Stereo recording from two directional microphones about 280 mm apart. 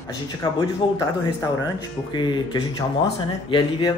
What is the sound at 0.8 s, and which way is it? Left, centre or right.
Speech, centre.